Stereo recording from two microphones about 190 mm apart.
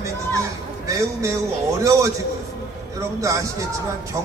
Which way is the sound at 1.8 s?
15° right (ahead or behind).